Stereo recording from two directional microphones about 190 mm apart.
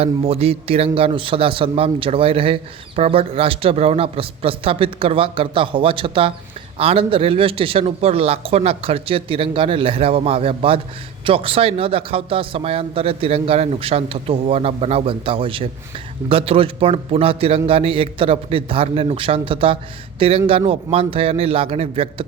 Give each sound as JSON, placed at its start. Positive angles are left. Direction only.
{"t": 0.0, "sound": "a man's voice", "side_deg": -30}